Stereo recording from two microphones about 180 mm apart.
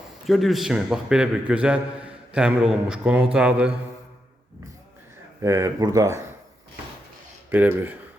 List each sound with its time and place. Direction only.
0.3 s a man's voice: centre (ahead or behind)
5.4 s speech: 15° right (ahead or behind)
7.5 s speech: 10° right (ahead or behind)